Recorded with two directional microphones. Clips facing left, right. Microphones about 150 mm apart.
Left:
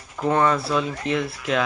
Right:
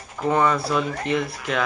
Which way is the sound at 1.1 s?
Centre (ahead or behind).